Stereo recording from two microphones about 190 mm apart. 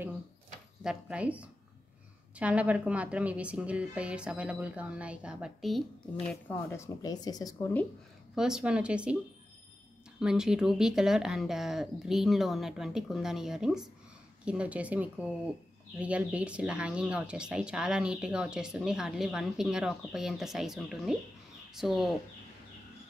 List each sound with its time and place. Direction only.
0.8 s a woman's voice: 5° right (ahead or behind)
6.7 s speech: 15° left (ahead or behind)
8.4 s speech: 5° right (ahead or behind)
10.2 s a woman's voice: 5° right (ahead or behind)